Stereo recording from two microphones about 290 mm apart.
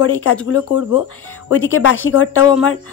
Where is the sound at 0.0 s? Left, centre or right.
Left.